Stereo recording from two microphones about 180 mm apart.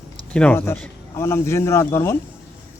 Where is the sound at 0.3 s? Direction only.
10° left (ahead or behind).